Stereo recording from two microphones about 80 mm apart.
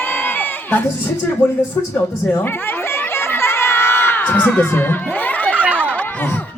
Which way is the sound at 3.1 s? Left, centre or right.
Left.